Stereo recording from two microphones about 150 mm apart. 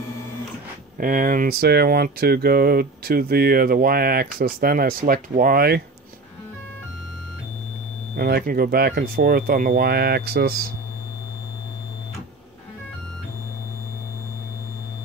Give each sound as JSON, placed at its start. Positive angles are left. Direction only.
{"t": 0.9, "sound": "speech", "side_deg": -70}
{"t": 8.2, "sound": "speech", "side_deg": -90}